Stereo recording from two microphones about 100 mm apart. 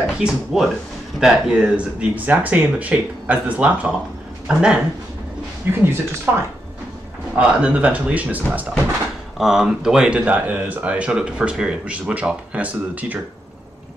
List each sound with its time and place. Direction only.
0.2 s speech: 5° right (ahead or behind)
5.7 s speech: 20° right (ahead or behind)